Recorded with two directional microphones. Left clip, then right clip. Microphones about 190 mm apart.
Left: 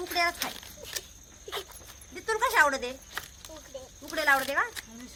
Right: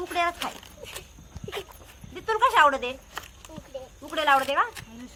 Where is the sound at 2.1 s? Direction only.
35° left (ahead or behind).